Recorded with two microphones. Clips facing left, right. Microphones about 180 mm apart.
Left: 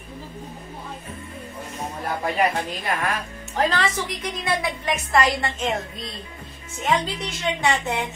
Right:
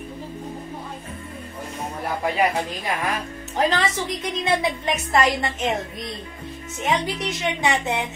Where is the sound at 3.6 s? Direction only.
20° right (ahead or behind).